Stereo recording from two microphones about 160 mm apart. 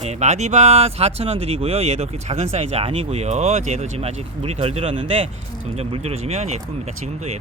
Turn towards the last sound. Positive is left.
turn(degrees=-45)  # may be behind; listen again after turning